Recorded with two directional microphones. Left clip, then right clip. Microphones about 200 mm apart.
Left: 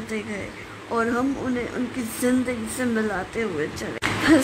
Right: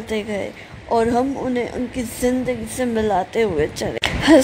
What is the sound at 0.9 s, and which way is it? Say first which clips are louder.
Speech: right 6 dB; 15° right (ahead or behind).